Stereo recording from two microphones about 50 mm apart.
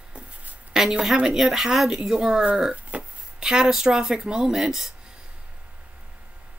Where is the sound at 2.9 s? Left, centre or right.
Right.